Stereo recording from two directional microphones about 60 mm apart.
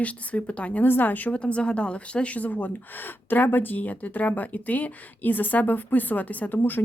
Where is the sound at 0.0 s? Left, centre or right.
Left.